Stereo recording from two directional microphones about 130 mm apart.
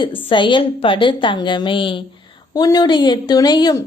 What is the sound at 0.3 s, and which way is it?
A woman's voice, 40° left (ahead or behind).